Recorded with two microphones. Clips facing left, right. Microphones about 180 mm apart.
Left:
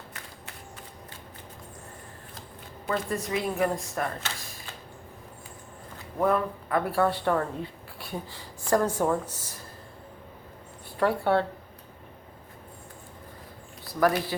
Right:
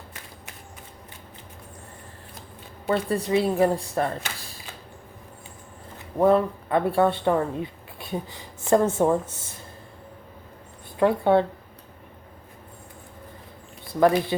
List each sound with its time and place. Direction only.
2.8 s a woman's voice: 30° right (ahead or behind)
6.1 s speech: 30° right (ahead or behind)
11.0 s speech: 20° right (ahead or behind)
14.0 s speech: 25° right (ahead or behind)